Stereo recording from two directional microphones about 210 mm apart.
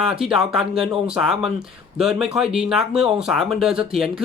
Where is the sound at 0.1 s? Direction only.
Centre (ahead or behind).